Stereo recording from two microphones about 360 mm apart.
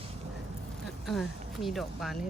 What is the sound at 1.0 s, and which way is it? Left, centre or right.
Speech, centre.